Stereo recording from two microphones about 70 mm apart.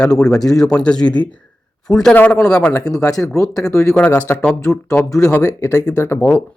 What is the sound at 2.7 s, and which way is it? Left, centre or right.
Speech, left.